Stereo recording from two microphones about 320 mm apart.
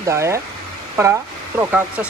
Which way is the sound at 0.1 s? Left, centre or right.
Centre.